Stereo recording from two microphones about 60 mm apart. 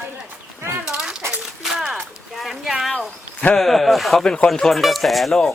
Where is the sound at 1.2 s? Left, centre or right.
Right.